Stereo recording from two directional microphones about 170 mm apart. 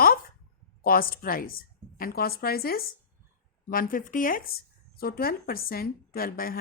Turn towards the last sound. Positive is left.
turn(degrees=60)  # may be behind; listen again after turning